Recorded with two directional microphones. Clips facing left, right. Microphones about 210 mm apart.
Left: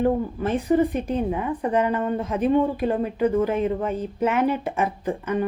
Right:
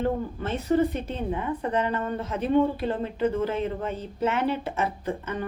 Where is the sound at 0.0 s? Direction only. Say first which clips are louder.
Left 5 dB; 15° left (ahead or behind).